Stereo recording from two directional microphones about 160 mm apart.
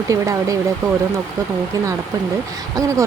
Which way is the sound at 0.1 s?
20° right (ahead or behind).